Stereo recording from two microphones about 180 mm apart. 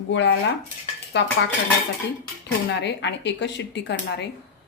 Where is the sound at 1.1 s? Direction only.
75° left (ahead or behind).